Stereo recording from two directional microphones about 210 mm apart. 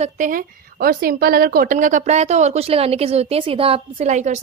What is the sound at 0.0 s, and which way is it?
A woman's voice, 40° right (ahead or behind).